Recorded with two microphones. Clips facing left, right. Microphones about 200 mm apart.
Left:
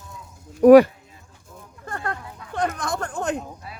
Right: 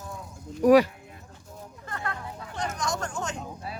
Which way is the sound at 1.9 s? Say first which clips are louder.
Left 4 dB; 50° left (ahead or behind).